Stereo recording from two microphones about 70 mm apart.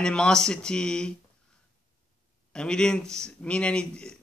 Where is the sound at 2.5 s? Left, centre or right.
Centre.